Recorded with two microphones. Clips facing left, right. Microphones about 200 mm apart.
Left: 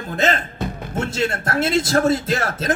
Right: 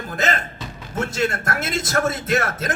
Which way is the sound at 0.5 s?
55° left (ahead or behind).